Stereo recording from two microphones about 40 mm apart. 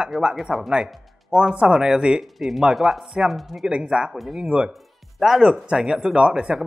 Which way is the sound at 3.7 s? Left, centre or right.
Right.